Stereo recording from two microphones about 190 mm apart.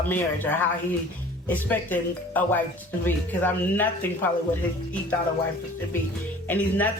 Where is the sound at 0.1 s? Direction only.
10° left (ahead or behind).